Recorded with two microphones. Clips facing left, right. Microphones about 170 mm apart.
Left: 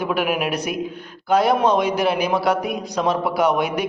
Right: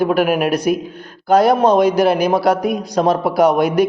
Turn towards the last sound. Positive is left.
turn(degrees=-40)  # may be behind; listen again after turning